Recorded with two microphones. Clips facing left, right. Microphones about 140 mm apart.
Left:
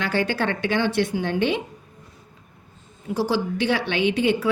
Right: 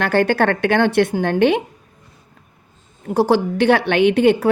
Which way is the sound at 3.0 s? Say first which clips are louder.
Right 7 dB; 55° right (ahead or behind).